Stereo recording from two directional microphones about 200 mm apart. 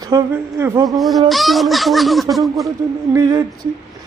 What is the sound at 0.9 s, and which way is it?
Speech, centre (ahead or behind).